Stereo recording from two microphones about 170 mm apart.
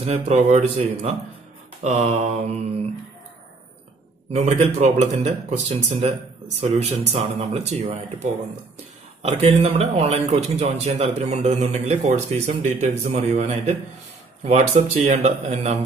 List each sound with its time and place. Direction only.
0.0 s speech: 40° right (ahead or behind)
4.3 s speech: 40° right (ahead or behind)